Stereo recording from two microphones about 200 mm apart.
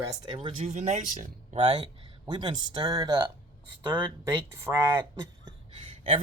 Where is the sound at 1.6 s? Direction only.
25° right (ahead or behind).